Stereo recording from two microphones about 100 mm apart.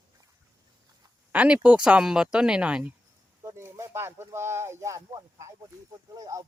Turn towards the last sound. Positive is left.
turn(degrees=-40)  # may be behind; listen again after turning